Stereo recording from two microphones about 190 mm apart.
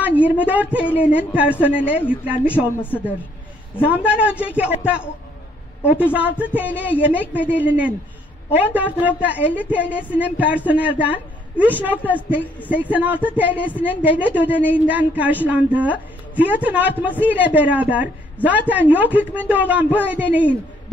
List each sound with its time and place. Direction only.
0.0 s a man's voice: 10° right (ahead or behind)
2.8 s speech: 10° left (ahead or behind)
3.8 s a man's voice: 5° right (ahead or behind)
6.1 s a man's voice: 10° right (ahead or behind)